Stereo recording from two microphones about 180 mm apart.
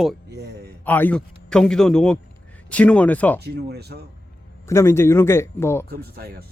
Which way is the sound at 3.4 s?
65° right (ahead or behind).